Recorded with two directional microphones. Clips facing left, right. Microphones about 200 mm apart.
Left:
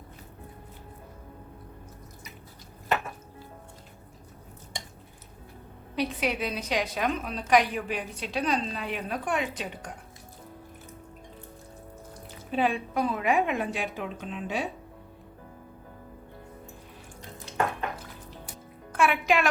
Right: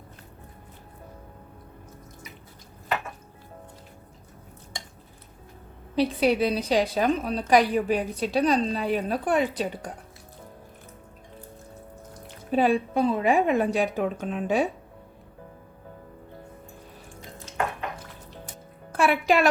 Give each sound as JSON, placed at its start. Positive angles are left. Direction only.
{"t": 6.0, "sound": "a woman's voice", "side_deg": -35}
{"t": 12.5, "sound": "a woman's voice", "side_deg": -40}
{"t": 12.9, "sound": "a woman's voice", "side_deg": -25}
{"t": 18.9, "sound": "a woman's voice", "side_deg": -35}